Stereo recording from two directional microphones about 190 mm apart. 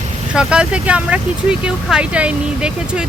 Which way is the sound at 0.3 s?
5° right (ahead or behind).